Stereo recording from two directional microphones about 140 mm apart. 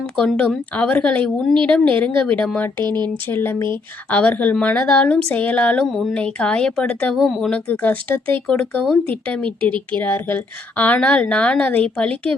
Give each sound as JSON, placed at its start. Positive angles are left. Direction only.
{"t": 0.3, "sound": "speech", "side_deg": 5}
{"t": 2.8, "sound": "speech", "side_deg": -30}
{"t": 3.2, "sound": "speech", "side_deg": 15}
{"t": 7.7, "sound": "speech", "side_deg": 10}